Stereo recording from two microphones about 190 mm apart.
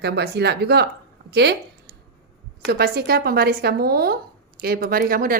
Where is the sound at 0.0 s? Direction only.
60° right (ahead or behind).